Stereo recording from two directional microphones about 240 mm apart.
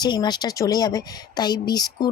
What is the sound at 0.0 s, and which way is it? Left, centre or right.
Speech, centre.